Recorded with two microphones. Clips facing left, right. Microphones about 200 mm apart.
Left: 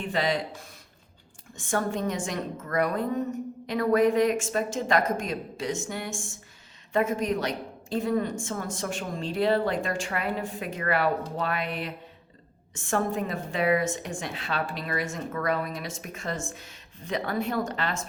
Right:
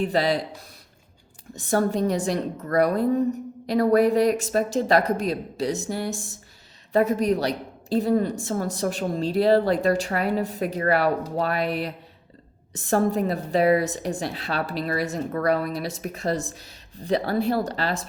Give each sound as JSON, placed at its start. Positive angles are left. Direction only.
{"t": 0.0, "sound": "a woman's voice", "side_deg": -35}
{"t": 1.5, "sound": "a woman's voice", "side_deg": -35}